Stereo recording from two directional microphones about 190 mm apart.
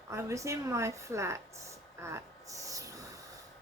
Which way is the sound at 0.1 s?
15° right (ahead or behind).